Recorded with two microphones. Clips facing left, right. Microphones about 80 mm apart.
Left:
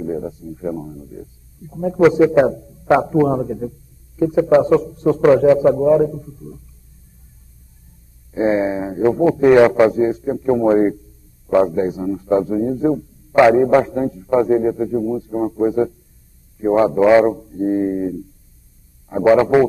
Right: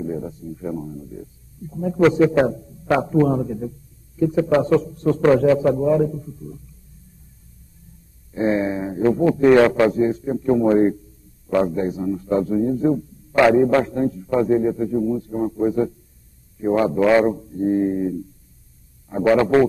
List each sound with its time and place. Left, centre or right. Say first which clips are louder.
0.0 s speech: left 3 dB; centre
8.3 s speech: left 3 dB; centre
9.6 s speech: left 3 dB; centre